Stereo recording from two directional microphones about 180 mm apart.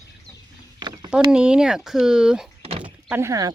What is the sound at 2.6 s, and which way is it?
Door, 30° right (ahead or behind).